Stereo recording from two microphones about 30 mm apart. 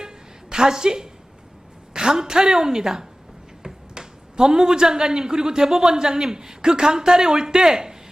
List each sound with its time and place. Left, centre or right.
0.5 s a man's voice: centre
1.9 s a sound: right
2.1 s a man's voice: centre